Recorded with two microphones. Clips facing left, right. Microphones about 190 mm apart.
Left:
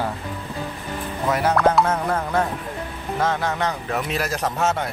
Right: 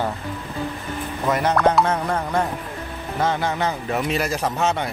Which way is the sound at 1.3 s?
5° left (ahead or behind).